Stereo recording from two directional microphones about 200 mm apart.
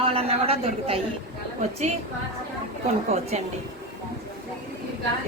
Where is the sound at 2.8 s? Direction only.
35° right (ahead or behind).